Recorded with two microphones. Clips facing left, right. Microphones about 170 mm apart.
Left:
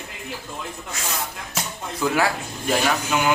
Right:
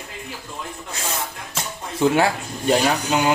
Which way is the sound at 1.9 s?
25° right (ahead or behind).